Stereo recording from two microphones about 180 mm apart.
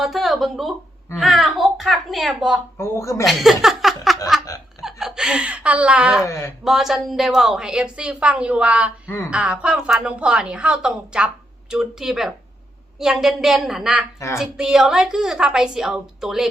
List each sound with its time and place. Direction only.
0.0 s a woman's voice: centre (ahead or behind)
2.7 s speech: 15° left (ahead or behind)
3.2 s a sound: centre (ahead or behind)
6.2 s speech: 15° left (ahead or behind)
6.7 s a woman's voice: centre (ahead or behind)
9.0 s speech: 15° left (ahead or behind)
9.3 s a woman's voice: 5° right (ahead or behind)